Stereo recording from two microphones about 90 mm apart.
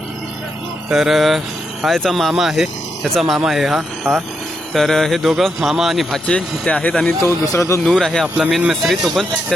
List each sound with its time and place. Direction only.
0.9 s speech: 5° right (ahead or behind)
6.2 s speech: 15° left (ahead or behind)
7.2 s a man's voice: 35° left (ahead or behind)
7.9 s speech: 5° left (ahead or behind)